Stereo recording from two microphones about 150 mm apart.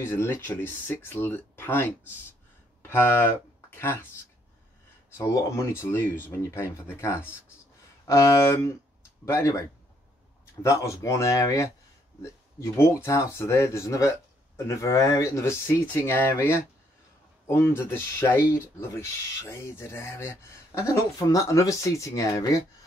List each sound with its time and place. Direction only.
0.0 s speech: 15° left (ahead or behind)
2.9 s speech: 15° left (ahead or behind)
5.1 s speech: 20° left (ahead or behind)
12.7 s speech: 15° left (ahead or behind)